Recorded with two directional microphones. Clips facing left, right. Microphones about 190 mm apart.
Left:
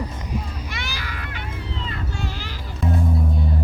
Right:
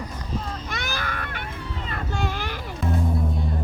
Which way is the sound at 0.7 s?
55° right (ahead or behind).